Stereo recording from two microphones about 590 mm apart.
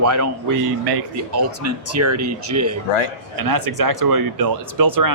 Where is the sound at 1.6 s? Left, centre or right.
Right.